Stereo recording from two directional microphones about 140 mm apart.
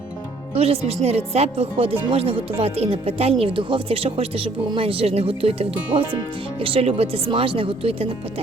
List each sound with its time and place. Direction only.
0.5 s speech: 45° right (ahead or behind)